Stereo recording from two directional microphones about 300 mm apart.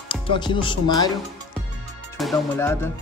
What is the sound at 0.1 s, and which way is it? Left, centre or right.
Speech, centre.